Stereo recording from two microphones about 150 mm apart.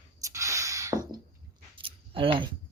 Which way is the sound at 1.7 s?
35° right (ahead or behind).